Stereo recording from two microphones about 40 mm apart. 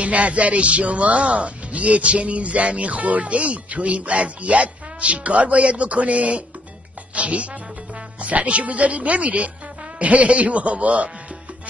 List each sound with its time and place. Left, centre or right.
0.0 s speech: right